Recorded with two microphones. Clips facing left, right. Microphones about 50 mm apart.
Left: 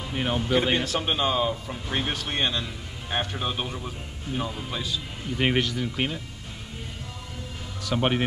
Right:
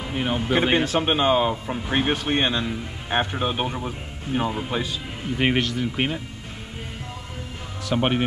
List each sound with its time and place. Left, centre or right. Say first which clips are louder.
0.1 s speech: right 2 dB; centre
0.5 s speech: right 4 dB; right
5.6 s speech: right 2 dB; centre
5.9 s speech: right 4 dB; right
7.9 s speech: right 2 dB; centre